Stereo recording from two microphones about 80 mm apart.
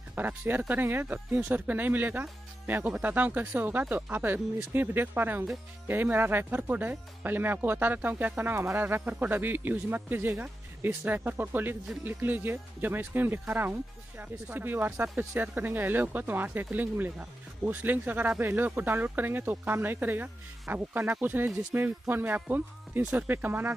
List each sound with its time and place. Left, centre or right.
0.1 s speech: right